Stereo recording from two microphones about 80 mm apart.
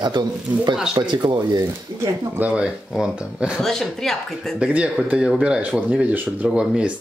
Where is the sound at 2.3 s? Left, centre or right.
Centre.